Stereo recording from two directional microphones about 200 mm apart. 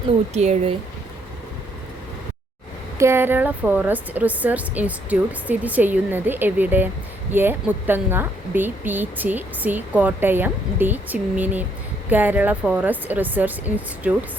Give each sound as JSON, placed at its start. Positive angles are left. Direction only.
{"t": 0.4, "sound": "speech", "side_deg": -35}
{"t": 3.0, "sound": "speech", "side_deg": -10}